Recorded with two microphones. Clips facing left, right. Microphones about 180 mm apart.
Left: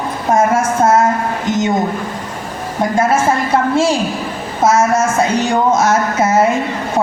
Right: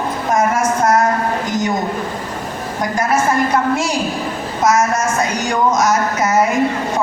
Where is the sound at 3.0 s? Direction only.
25° left (ahead or behind).